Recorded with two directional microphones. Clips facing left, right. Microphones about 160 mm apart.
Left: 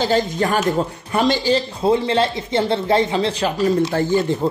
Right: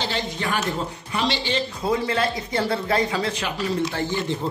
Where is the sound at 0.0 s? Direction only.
45° left (ahead or behind).